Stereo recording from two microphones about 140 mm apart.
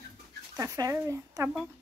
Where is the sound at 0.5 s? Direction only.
25° right (ahead or behind).